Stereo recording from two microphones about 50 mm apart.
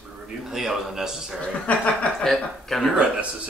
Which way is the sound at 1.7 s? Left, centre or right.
Left.